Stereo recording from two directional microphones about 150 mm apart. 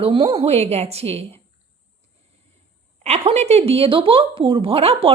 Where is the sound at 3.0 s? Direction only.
45° right (ahead or behind).